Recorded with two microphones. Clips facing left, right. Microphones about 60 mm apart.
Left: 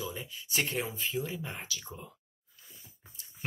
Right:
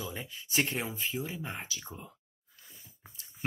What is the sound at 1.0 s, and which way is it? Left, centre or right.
Speech, centre.